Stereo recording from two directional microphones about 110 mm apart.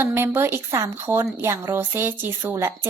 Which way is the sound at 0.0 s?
20° right (ahead or behind).